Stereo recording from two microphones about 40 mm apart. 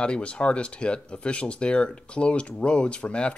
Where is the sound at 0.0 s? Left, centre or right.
Left.